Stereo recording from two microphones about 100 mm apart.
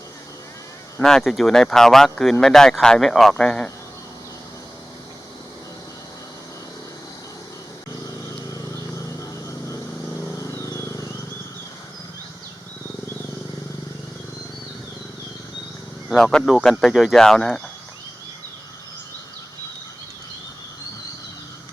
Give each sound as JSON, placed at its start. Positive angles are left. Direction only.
{"t": 1.0, "sound": "speech", "side_deg": 5}
{"t": 8.5, "sound": "vehicle", "side_deg": 30}
{"t": 16.0, "sound": "speech", "side_deg": 5}